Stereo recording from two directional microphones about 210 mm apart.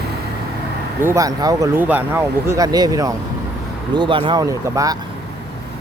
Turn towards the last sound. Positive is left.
turn(degrees=-15)  # may be behind; listen again after turning